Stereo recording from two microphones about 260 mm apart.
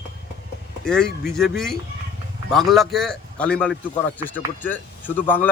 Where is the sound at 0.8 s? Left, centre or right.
Centre.